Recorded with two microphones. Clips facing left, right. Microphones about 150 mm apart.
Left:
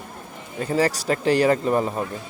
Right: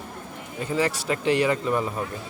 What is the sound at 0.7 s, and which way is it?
Speech, 40° left (ahead or behind).